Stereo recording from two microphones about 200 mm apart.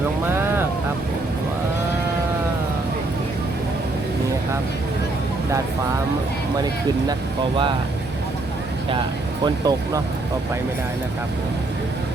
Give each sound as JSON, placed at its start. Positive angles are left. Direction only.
{"t": 7.1, "sound": "speech", "side_deg": -25}
{"t": 9.4, "sound": "speech", "side_deg": -20}